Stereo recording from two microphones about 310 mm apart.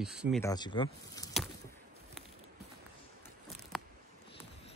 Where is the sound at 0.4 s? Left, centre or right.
Centre.